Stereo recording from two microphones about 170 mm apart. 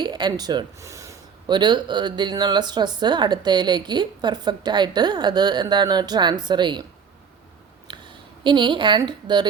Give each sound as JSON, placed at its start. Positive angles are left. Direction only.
{"t": 0.0, "sound": "speech", "side_deg": -25}
{"t": 7.9, "sound": "speech", "side_deg": -30}